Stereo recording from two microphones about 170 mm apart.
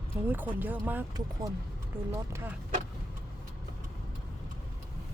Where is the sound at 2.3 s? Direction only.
15° right (ahead or behind).